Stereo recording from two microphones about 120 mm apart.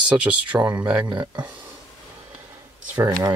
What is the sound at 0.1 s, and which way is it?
Speech, 10° right (ahead or behind).